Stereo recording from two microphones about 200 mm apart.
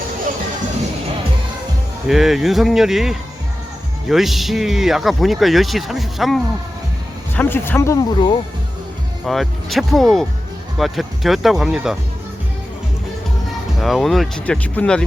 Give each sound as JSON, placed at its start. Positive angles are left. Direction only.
{"t": 2.0, "sound": "speech", "side_deg": 0}
{"t": 7.3, "sound": "speech", "side_deg": 10}
{"t": 9.2, "sound": "speech", "side_deg": 0}
{"t": 13.8, "sound": "speech", "side_deg": 0}